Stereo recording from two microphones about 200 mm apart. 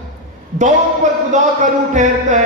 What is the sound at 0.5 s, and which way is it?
Speech, 40° right (ahead or behind).